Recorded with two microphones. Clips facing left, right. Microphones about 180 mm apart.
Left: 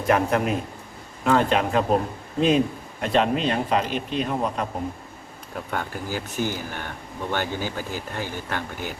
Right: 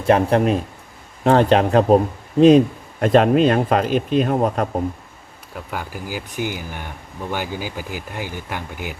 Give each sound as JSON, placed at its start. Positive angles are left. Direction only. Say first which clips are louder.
{"t": 0.0, "sound": "speech", "louder": "right 5 dB", "side_deg": -30}
{"t": 3.0, "sound": "speech", "louder": "right 8 dB", "side_deg": -50}
{"t": 5.5, "sound": "speech", "louder": "even", "side_deg": -5}